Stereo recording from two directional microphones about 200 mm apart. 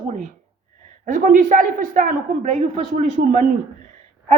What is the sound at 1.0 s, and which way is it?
A woman's voice, 45° right (ahead or behind).